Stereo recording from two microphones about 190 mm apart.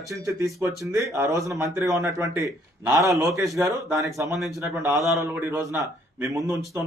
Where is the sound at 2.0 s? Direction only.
15° right (ahead or behind).